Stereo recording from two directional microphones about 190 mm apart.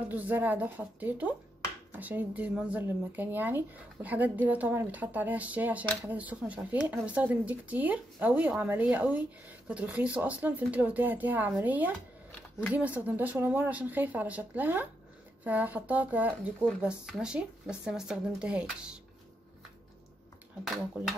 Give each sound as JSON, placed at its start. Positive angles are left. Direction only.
{"t": 0.1, "sound": "speech", "side_deg": -10}
{"t": 20.6, "sound": "speech", "side_deg": 0}